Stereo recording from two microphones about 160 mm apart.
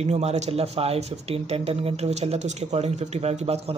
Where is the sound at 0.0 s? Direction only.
40° right (ahead or behind).